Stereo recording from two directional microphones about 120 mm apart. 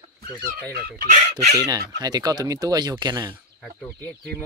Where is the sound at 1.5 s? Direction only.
30° right (ahead or behind).